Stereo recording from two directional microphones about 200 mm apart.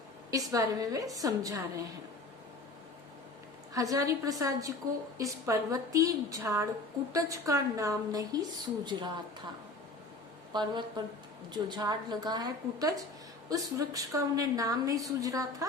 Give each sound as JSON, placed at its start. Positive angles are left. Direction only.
{"t": 0.3, "sound": "a woman's voice", "side_deg": -15}
{"t": 3.8, "sound": "a woman's voice", "side_deg": -15}
{"t": 10.5, "sound": "a woman's voice", "side_deg": -20}